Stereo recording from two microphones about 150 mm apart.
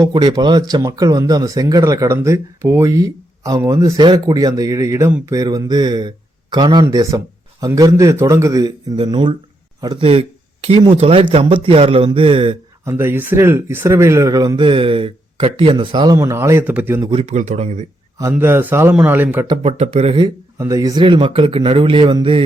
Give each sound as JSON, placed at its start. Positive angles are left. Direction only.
{"t": 0.0, "sound": "speech", "side_deg": -30}
{"t": 9.0, "sound": "speech", "side_deg": -35}
{"t": 10.1, "sound": "speech", "side_deg": -40}
{"t": 12.8, "sound": "speech", "side_deg": -15}
{"t": 16.1, "sound": "a man's voice", "side_deg": -20}
{"t": 17.1, "sound": "speech", "side_deg": -45}
{"t": 18.2, "sound": "a man's voice", "side_deg": -15}
{"t": 19.6, "sound": "speech", "side_deg": -45}
{"t": 20.6, "sound": "speech", "side_deg": -20}